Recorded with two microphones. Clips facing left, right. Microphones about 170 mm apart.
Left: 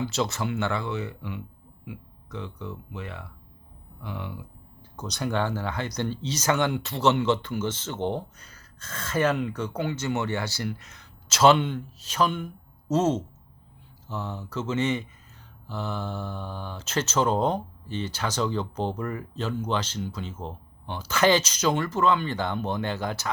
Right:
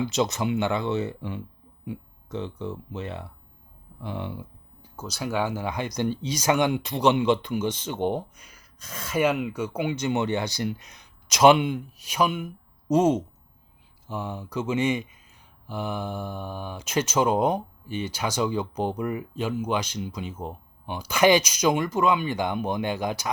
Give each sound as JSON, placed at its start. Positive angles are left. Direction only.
{"t": 0.0, "sound": "speech", "side_deg": -20}
{"t": 4.8, "sound": "speech", "side_deg": 0}